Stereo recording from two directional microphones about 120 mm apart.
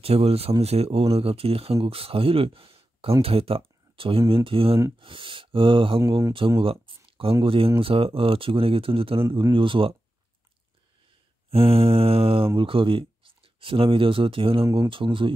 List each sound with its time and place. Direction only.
0.0 s speech: 55° right (ahead or behind)
5.9 s speech: 25° right (ahead or behind)
6.6 s a sound: 50° right (ahead or behind)
7.4 s speech: 50° right (ahead or behind)
11.5 s speech: 55° right (ahead or behind)
14.6 s speech: 25° right (ahead or behind)
14.9 s speech: 45° right (ahead or behind)